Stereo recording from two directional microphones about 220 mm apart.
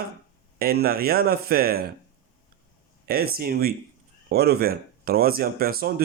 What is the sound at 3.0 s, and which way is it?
Speech, 45° right (ahead or behind).